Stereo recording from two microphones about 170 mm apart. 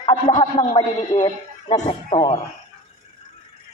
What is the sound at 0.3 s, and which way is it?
A woman's voice, 25° left (ahead or behind).